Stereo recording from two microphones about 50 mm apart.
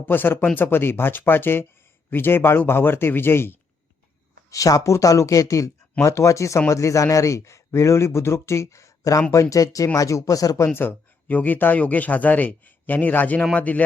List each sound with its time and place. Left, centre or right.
0.0 s speech: left
4.4 s speech: left
11.3 s a man's voice: left